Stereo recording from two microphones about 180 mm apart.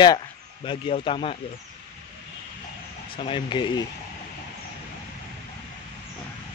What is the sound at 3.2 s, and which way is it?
Speech, 30° left (ahead or behind).